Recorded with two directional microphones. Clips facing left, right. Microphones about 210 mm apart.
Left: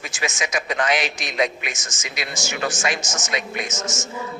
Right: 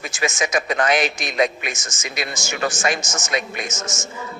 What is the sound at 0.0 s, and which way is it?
A man's voice, 45° right (ahead or behind).